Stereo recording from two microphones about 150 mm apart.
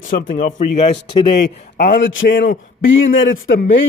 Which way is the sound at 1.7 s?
70° left (ahead or behind).